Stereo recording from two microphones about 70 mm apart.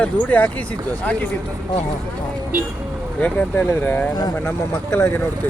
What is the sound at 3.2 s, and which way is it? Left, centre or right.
Speech, left.